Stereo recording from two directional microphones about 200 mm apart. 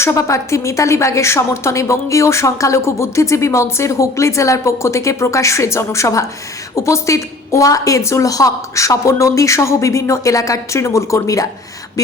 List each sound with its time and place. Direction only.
0.0 s a woman's voice: 15° left (ahead or behind)